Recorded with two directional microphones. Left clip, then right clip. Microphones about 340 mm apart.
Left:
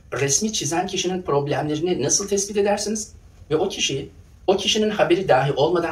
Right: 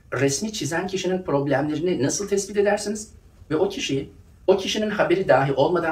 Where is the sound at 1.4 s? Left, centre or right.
Centre.